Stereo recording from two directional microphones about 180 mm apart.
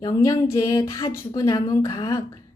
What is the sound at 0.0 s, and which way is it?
A woman's voice, 20° left (ahead or behind).